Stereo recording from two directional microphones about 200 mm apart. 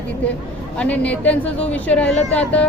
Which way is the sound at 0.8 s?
5° left (ahead or behind).